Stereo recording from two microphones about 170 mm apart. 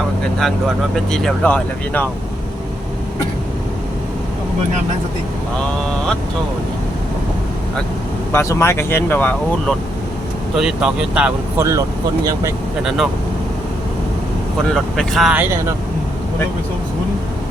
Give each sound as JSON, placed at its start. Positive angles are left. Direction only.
{"t": 1.1, "sound": "speech", "side_deg": 5}
{"t": 8.3, "sound": "speech", "side_deg": 15}
{"t": 10.5, "sound": "speech", "side_deg": -5}
{"t": 14.7, "sound": "speech", "side_deg": 0}